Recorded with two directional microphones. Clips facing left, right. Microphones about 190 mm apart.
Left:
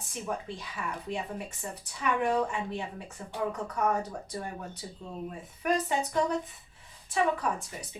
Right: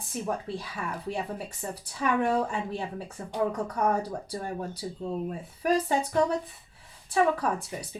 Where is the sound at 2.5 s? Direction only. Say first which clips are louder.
Right 2 dB; 35° right (ahead or behind).